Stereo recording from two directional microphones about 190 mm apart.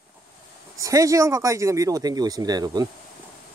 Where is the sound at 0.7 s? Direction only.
15° right (ahead or behind).